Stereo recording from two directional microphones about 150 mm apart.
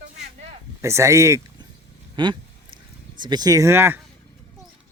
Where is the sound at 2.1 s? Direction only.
30° right (ahead or behind); by 4.0 s 15° right (ahead or behind).